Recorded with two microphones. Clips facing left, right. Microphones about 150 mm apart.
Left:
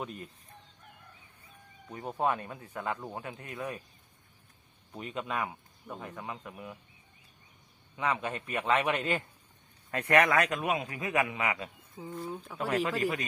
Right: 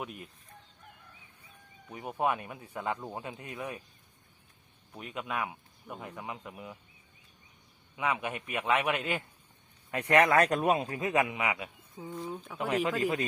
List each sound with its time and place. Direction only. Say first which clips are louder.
0.0 s speech: left 1 dB; 5° right (ahead or behind)
1.9 s speech: even; 10° right (ahead or behind)
4.9 s speech: left 1 dB; 5° right (ahead or behind)
7.9 s speech: even; 10° right (ahead or behind)
9.9 s a man's voice: right 1 dB; 20° right (ahead or behind)
11.9 s speech: even; centre (ahead or behind)
12.5 s a man's voice: right 1 dB; 20° right (ahead or behind)